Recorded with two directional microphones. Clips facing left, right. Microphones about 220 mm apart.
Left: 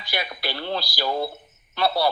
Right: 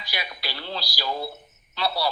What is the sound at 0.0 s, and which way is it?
A man's voice, 50° left (ahead or behind).